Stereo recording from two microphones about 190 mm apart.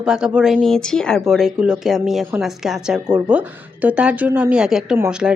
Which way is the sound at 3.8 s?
5° right (ahead or behind).